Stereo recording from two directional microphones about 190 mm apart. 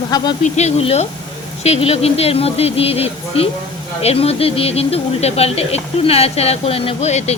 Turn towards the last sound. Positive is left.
turn(degrees=35)  # may be behind; listen again after turning